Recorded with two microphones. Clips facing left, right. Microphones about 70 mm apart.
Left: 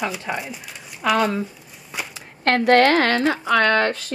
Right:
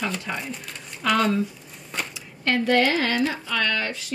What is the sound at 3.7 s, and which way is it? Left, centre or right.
Speech, left.